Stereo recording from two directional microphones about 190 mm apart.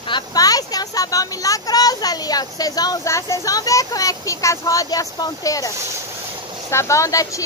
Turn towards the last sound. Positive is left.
turn(degrees=15)  # may be behind; listen again after turning